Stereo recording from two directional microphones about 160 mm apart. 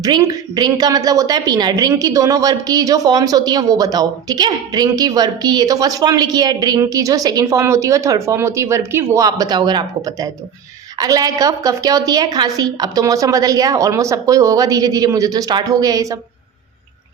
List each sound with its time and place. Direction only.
0.0 s a woman's voice: 25° right (ahead or behind)